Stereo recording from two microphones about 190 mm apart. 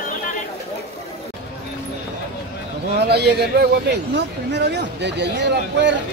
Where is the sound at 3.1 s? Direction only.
60° right (ahead or behind).